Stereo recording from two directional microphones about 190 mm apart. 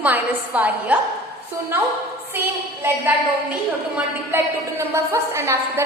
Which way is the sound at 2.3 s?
10° right (ahead or behind).